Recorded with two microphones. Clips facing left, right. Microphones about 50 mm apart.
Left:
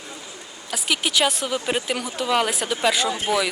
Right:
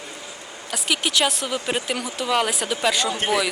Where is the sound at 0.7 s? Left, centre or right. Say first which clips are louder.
Even; centre.